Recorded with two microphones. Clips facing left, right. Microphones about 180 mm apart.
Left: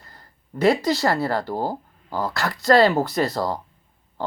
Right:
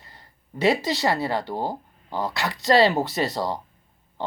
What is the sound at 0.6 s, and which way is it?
Speech, centre (ahead or behind).